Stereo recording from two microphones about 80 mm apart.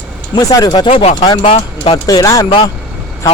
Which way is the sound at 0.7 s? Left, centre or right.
Left.